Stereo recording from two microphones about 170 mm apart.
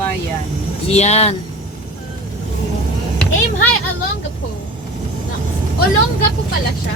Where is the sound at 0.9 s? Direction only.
40° left (ahead or behind).